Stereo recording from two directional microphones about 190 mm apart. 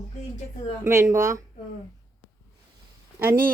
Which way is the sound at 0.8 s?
15° right (ahead or behind).